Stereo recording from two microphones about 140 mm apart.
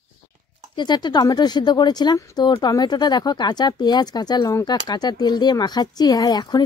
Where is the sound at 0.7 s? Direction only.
30° left (ahead or behind).